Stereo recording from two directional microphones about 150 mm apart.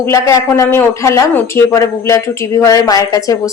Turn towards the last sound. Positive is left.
turn(degrees=20)  # may be behind; listen again after turning